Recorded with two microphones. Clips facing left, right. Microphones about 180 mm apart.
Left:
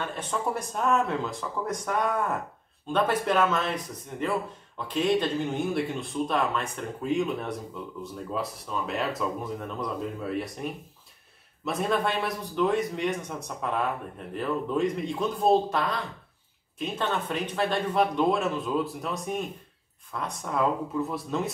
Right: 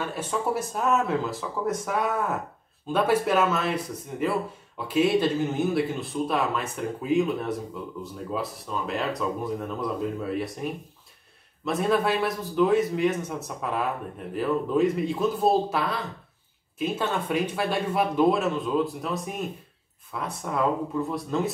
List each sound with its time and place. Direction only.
0.1 s speech: 5° right (ahead or behind)